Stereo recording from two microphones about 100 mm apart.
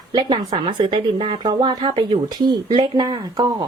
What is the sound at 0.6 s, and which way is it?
Speech, 55° right (ahead or behind).